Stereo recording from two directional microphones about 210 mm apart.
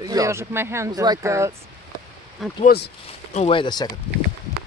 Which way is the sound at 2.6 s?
50° left (ahead or behind).